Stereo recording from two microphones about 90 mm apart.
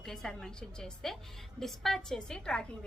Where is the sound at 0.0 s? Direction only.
5° left (ahead or behind).